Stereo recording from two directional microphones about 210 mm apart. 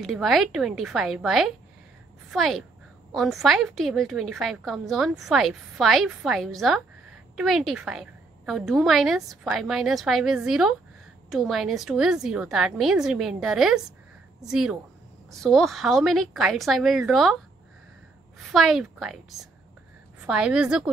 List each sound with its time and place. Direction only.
0.0 s a woman's voice: centre (ahead or behind)
18.5 s a woman's voice: centre (ahead or behind)
20.2 s a woman's voice: 5° right (ahead or behind)